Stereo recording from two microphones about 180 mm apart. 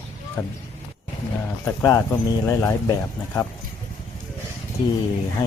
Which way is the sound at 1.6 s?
15° left (ahead or behind).